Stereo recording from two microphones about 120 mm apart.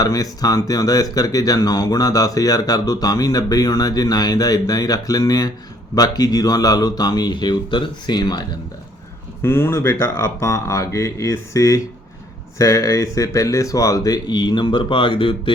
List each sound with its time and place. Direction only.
0.0 s speech: 30° left (ahead or behind)
9.4 s speech: 20° left (ahead or behind); by 15.5 s 45° left (ahead or behind)